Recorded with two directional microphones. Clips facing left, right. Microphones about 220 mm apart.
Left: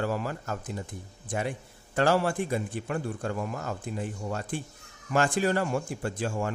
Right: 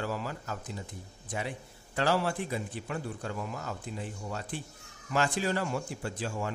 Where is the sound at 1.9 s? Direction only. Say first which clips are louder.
Left 4 dB; 50° left (ahead or behind).